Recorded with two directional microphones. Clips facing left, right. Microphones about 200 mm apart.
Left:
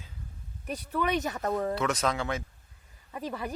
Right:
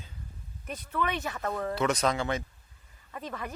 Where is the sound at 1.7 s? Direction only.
Centre (ahead or behind).